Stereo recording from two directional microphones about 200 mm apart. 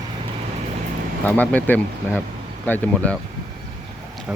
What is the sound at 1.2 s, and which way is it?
Speech, 10° left (ahead or behind).